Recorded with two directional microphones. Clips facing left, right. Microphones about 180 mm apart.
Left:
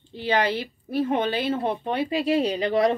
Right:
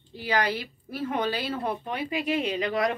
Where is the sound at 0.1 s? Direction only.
25° left (ahead or behind).